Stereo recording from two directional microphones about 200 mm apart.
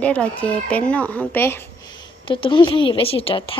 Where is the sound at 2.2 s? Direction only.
25° left (ahead or behind).